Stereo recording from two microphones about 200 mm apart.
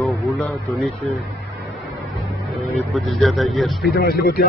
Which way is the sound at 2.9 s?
Centre (ahead or behind).